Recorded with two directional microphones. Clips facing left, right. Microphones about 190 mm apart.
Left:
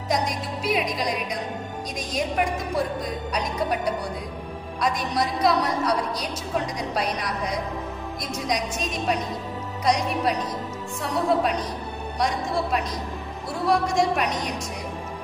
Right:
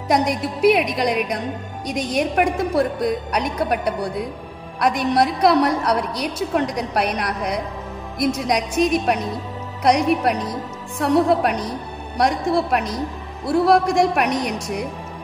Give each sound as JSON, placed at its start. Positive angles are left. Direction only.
{"t": 0.1, "sound": "a woman's voice", "side_deg": -65}